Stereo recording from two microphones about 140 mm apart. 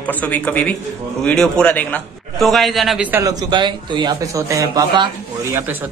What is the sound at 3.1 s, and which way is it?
A man's voice, 25° right (ahead or behind).